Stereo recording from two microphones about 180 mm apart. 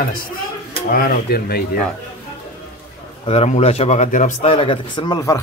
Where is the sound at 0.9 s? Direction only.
55° left (ahead or behind).